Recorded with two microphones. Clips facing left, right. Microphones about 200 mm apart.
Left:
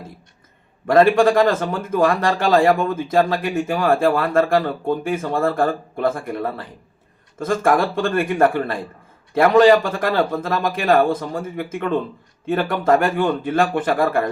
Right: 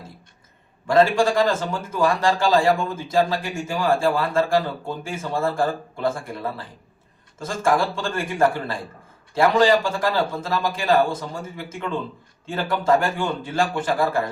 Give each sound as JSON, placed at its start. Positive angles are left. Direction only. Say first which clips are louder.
{"t": 0.9, "sound": "a man's voice", "louder": "left 4 dB", "side_deg": 55}